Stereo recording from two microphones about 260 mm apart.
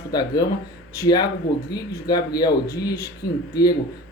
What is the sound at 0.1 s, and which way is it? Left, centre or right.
Speech, centre.